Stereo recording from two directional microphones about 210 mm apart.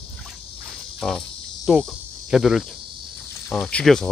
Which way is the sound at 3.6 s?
5° left (ahead or behind).